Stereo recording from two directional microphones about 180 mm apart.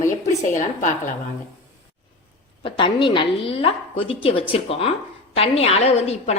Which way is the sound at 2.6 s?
25° left (ahead or behind).